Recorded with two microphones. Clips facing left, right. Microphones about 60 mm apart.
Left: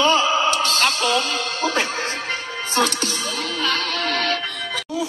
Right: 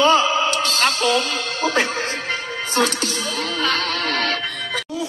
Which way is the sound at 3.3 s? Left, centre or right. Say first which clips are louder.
Right 2 dB; right.